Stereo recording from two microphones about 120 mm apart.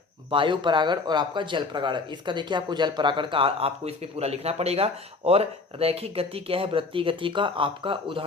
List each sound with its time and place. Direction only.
0.3 s speech: 45° right (ahead or behind)